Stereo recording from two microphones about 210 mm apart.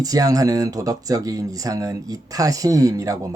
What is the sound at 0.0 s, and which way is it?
Speech, 15° right (ahead or behind).